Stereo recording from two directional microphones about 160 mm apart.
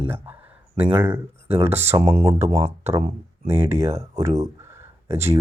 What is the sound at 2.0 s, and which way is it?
Speech, 35° right (ahead or behind).